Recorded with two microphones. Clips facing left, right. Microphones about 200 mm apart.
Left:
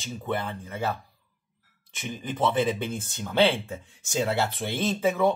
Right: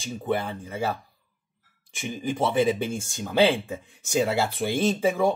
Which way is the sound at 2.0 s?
15° right (ahead or behind).